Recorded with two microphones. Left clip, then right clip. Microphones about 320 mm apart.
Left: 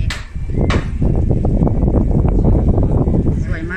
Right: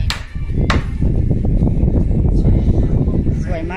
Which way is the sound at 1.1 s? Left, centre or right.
Left.